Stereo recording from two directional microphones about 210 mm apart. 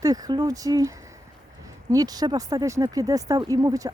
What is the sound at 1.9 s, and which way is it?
Speech, 15° right (ahead or behind).